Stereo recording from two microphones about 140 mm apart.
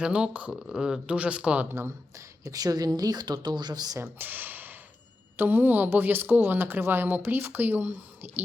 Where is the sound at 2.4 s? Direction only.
25° right (ahead or behind).